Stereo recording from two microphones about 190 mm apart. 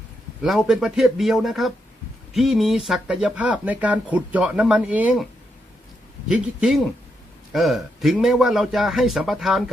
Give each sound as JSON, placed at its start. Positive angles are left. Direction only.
{"t": 0.4, "sound": "a man's voice", "side_deg": 0}
{"t": 6.2, "sound": "a man's voice", "side_deg": -5}